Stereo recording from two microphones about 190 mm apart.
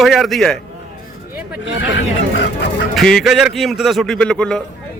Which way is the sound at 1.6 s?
70° left (ahead or behind).